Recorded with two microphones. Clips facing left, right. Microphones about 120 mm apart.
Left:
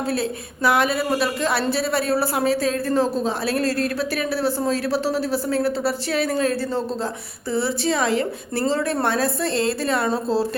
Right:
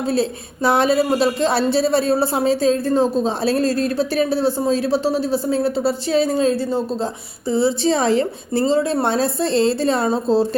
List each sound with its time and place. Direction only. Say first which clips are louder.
0.1 s a woman's voice: right 4 dB; 25° right (ahead or behind)